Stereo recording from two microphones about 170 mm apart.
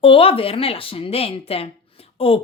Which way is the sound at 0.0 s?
30° left (ahead or behind).